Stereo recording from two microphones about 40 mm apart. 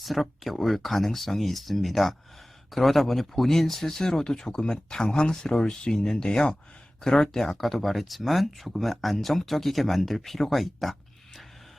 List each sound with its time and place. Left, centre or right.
0.0 s speech: centre